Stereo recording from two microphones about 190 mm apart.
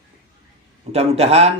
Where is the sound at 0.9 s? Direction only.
35° right (ahead or behind).